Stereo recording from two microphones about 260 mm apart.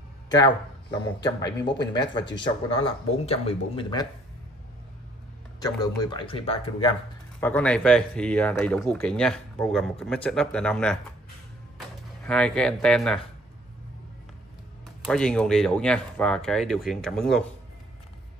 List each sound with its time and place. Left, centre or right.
0.9 s speech: centre
5.6 s speech: centre
7.3 s speech: centre
12.3 s speech: centre
15.0 s speech: centre